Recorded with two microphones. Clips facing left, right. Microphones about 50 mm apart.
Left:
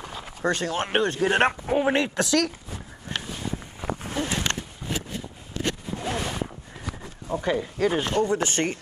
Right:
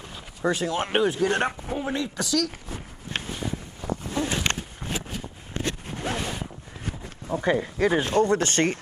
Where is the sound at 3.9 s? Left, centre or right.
Left.